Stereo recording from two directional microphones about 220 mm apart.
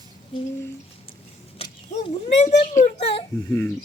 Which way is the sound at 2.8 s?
30° left (ahead or behind).